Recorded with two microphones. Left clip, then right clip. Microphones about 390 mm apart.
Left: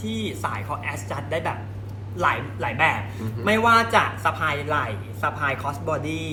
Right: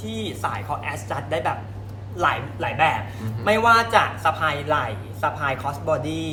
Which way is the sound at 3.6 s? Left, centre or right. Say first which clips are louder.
Right 1 dB; right.